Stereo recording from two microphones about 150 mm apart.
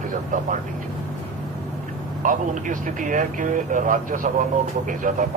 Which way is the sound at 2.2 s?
60° right (ahead or behind).